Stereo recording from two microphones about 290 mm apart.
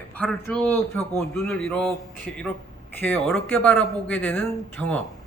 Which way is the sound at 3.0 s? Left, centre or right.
Centre.